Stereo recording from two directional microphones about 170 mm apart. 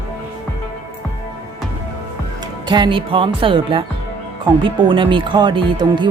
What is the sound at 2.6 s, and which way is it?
Speech, 25° right (ahead or behind).